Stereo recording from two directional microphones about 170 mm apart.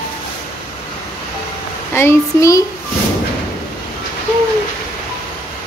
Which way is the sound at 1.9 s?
15° left (ahead or behind).